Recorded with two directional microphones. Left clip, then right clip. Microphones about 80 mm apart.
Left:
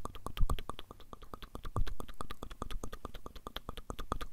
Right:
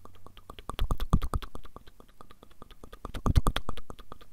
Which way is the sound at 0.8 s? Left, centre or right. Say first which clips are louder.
Right 17 dB; right.